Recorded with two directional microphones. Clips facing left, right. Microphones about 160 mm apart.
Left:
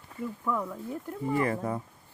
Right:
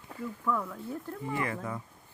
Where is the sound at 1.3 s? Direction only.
35° left (ahead or behind).